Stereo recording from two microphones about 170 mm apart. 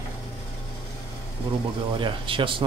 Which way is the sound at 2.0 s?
30° right (ahead or behind).